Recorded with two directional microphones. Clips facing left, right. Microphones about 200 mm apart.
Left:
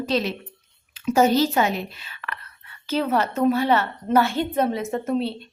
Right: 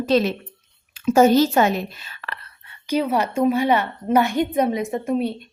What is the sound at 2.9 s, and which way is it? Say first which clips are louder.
A woman's voice: right 2 dB; 10° right (ahead or behind).